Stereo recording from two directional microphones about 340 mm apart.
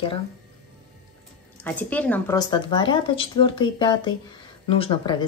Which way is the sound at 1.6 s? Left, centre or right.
Centre.